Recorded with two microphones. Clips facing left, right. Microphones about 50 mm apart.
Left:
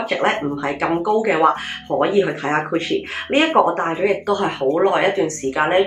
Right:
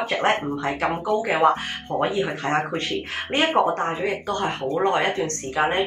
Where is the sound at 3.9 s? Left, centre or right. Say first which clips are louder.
Left 7 dB; left.